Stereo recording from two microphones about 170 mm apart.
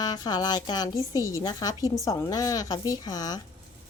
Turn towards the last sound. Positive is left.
turn(degrees=20)  # may be behind; listen again after turning